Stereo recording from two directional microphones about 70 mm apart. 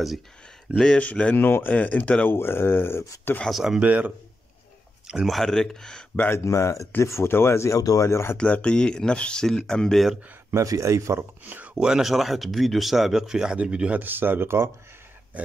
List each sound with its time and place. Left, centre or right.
0.7 s speech: centre
1.3 s speech: left
2.2 s speech: left
3.4 s speech: centre
3.8 s speech: right
5.2 s speech: centre
6.1 s speech: left
6.4 s speech: left
8.4 s speech: centre
10.5 s speech: right
11.1 s speech: right
11.7 s speech: centre; by 14.7 s right